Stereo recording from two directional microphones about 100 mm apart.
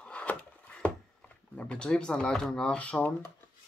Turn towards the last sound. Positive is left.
turn(degrees=15)  # may be behind; listen again after turning